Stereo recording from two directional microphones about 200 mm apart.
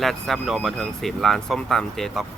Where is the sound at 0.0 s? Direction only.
Centre (ahead or behind).